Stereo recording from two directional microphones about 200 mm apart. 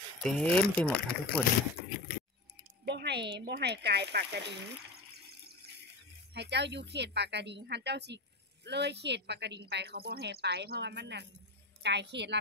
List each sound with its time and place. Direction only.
0.2 s speech: 5° left (ahead or behind)
2.8 s speech: 55° right (ahead or behind)
6.3 s a woman's voice: 55° right (ahead or behind)